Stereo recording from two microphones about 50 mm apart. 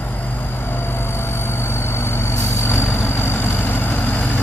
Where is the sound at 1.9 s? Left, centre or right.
Left.